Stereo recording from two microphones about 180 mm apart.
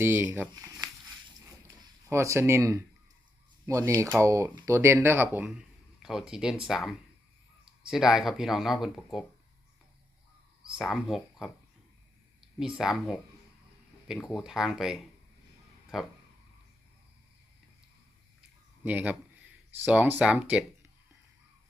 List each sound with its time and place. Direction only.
0.0 s speech: 10° right (ahead or behind)
1.6 s a sound: 15° right (ahead or behind)
3.7 s speech: 15° right (ahead or behind)
10.8 s speech: centre (ahead or behind)
12.5 s speech: 5° right (ahead or behind)
18.9 s speech: 10° right (ahead or behind)